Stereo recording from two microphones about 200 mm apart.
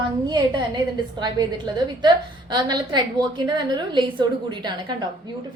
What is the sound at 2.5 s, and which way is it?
A woman's voice, 20° right (ahead or behind).